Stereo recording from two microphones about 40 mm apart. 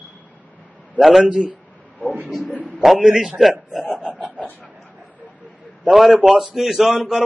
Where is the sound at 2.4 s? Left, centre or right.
Left.